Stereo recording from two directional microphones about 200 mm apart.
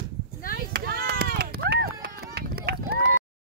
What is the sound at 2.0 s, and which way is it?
Run, 50° right (ahead or behind).